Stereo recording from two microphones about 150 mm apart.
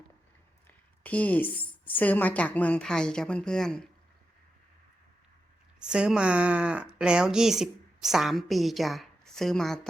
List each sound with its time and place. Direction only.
1.0 s a woman's voice: 10° left (ahead or behind)
5.8 s speech: 5° right (ahead or behind)